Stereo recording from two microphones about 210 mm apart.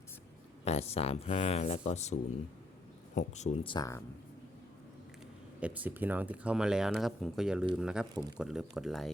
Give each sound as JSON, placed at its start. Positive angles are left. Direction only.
{"t": 0.6, "sound": "speech", "side_deg": 30}
{"t": 3.2, "sound": "speech", "side_deg": 35}
{"t": 5.5, "sound": "speech", "side_deg": -5}